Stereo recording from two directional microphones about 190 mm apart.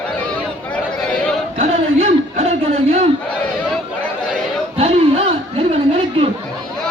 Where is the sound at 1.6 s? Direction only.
30° right (ahead or behind).